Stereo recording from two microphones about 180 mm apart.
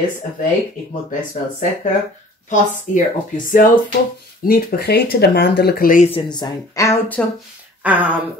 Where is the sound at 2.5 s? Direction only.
45° left (ahead or behind).